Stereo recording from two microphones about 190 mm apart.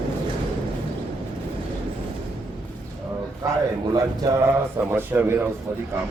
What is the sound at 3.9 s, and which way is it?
A man's voice, 20° right (ahead or behind).